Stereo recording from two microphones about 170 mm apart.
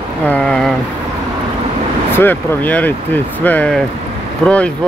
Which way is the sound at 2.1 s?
10° left (ahead or behind).